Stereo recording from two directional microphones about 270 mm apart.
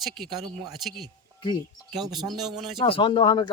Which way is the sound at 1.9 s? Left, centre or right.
Centre.